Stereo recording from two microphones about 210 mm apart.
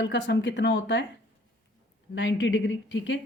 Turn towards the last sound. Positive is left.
turn(degrees=60)  # may be behind; listen again after turning